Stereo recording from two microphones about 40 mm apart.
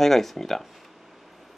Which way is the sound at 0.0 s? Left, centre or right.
Centre.